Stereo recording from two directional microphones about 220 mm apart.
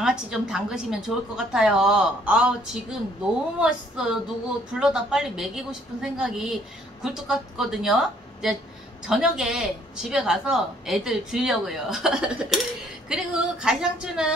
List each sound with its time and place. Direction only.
0.0 s speech: centre (ahead or behind)